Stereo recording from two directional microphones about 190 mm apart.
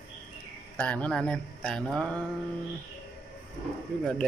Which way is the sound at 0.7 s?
5° left (ahead or behind).